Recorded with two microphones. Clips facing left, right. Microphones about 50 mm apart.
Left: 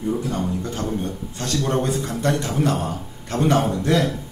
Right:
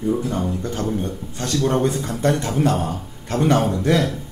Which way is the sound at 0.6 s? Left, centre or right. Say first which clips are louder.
Right 2 dB; right.